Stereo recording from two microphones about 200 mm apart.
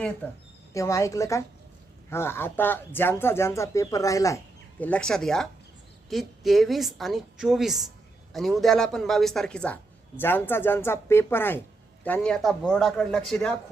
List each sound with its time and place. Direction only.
0.7 s a woman's voice: 15° left (ahead or behind)